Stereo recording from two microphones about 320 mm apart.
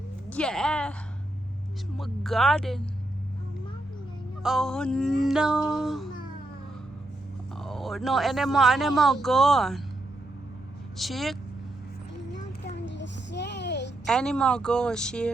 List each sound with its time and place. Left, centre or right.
0.3 s speech: centre
2.0 s speech: centre
4.4 s speech: centre
7.6 s speech: centre
10.9 s speech: centre
12.3 s a sound: left
14.1 s speech: centre